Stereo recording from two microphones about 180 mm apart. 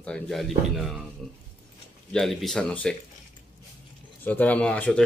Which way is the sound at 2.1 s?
Centre (ahead or behind).